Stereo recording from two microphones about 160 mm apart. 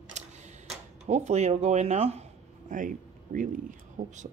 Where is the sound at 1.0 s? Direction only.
45° right (ahead or behind).